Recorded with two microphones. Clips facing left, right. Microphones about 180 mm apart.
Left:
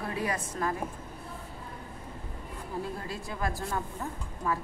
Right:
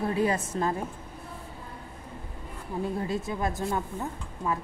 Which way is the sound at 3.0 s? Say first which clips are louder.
Right 5 dB; 20° right (ahead or behind).